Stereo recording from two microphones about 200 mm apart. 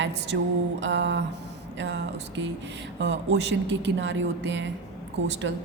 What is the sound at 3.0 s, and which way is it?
A woman's voice, 65° right (ahead or behind).